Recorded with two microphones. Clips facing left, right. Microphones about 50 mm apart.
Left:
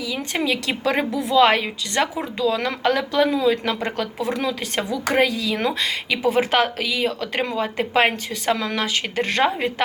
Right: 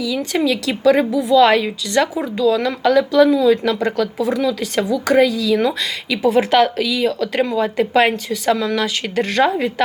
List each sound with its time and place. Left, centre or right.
0.0 s speech: left
1.4 s speech: left